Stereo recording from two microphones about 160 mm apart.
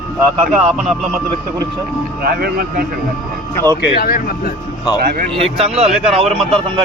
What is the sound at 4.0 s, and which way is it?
Speech, 70° left (ahead or behind).